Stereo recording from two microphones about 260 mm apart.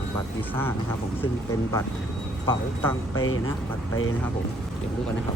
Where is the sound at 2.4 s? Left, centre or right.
Centre.